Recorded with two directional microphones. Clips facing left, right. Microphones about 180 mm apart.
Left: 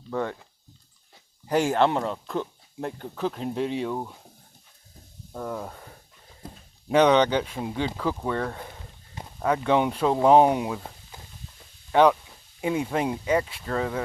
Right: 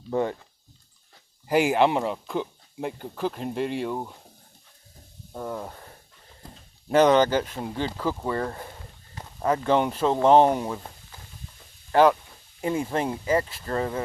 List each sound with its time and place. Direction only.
0.1 s speech: 15° right (ahead or behind)
1.5 s speech: 10° right (ahead or behind)
5.3 s speech: 5° right (ahead or behind)
12.6 s speech: 5° left (ahead or behind)